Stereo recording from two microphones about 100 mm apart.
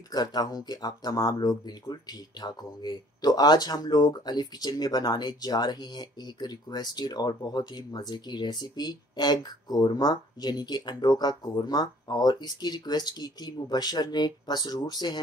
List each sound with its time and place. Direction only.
0.1 s speech: 40° left (ahead or behind)